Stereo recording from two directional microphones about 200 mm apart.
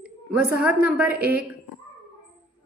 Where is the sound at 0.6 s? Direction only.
5° right (ahead or behind).